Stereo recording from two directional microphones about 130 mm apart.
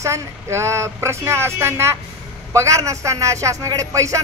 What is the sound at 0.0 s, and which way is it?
Speech, 20° right (ahead or behind).